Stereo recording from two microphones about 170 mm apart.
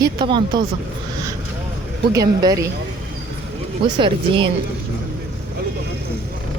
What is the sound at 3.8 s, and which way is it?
Speech, 30° right (ahead or behind).